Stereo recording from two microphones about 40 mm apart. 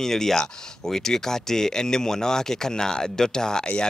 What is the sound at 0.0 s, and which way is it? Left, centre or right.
Speech, centre.